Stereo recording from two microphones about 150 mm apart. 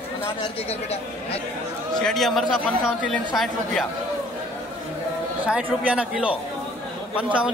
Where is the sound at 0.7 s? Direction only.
45° left (ahead or behind).